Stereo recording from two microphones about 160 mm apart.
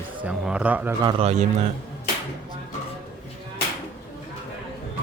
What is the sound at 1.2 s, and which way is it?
Speech, 45° right (ahead or behind).